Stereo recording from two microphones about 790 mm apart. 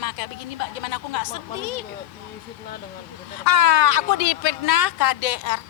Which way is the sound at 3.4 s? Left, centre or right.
Left.